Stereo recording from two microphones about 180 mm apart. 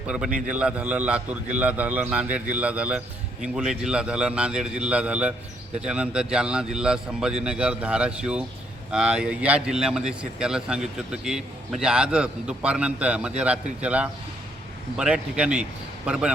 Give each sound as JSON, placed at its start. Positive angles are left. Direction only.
{"t": 0.1, "sound": "a man's voice", "side_deg": -5}